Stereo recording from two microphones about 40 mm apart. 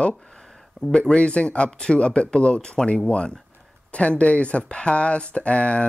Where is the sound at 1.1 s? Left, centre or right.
Left.